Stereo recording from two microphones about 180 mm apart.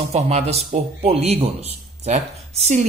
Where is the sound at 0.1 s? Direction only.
35° right (ahead or behind).